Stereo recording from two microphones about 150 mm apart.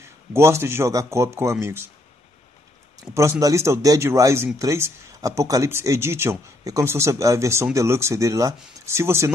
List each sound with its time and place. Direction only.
0.0 s speech: 20° right (ahead or behind)
3.0 s speech: 20° right (ahead or behind)